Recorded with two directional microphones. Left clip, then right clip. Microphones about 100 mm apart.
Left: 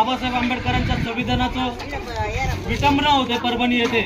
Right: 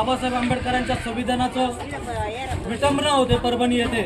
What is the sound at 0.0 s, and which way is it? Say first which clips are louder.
A man's voice: left 2 dB; 30° right (ahead or behind).